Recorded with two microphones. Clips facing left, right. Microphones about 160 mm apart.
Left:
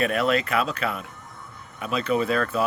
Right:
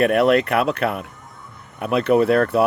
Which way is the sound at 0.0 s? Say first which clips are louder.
Right 7 dB; 60° right (ahead or behind).